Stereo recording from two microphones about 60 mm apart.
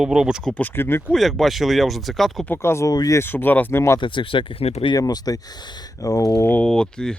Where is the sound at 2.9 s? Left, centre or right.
Left.